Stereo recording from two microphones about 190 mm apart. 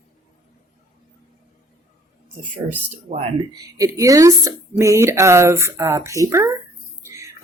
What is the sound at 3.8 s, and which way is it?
Speech, 15° right (ahead or behind).